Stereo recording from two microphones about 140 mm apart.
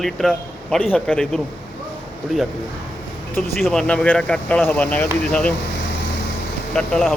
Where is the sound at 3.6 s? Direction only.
5° left (ahead or behind).